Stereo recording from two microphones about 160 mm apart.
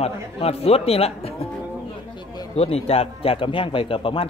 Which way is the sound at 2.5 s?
40° left (ahead or behind).